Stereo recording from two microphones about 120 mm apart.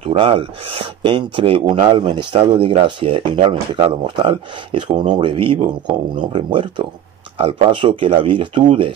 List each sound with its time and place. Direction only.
0.0 s speech: 55° right (ahead or behind)